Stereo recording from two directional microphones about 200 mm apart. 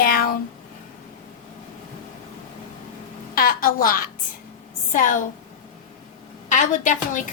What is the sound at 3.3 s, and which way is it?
A woman's voice, 45° left (ahead or behind).